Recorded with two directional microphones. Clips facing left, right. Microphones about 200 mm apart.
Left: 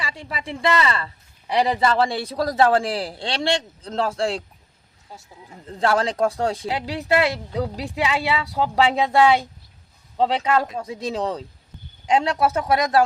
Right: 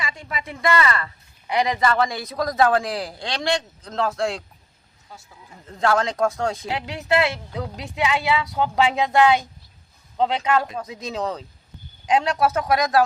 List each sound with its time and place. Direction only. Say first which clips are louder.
0.0 s speech: even; 30° left (ahead or behind)
5.6 s speech: even; 30° left (ahead or behind)